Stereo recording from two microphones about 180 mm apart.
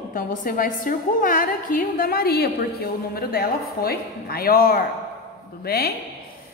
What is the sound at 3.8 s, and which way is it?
Speech, 55° left (ahead or behind).